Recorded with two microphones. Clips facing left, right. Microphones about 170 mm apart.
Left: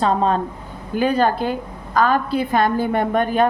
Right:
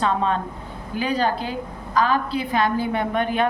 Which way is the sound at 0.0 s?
35° left (ahead or behind).